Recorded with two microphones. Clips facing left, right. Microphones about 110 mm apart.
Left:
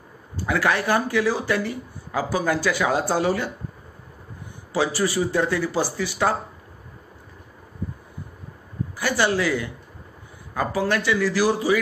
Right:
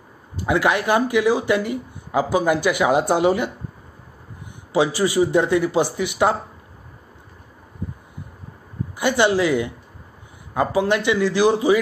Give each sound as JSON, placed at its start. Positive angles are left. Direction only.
{"t": 0.4, "sound": "speech", "side_deg": -20}
{"t": 4.7, "sound": "speech", "side_deg": -20}
{"t": 8.9, "sound": "speech", "side_deg": -20}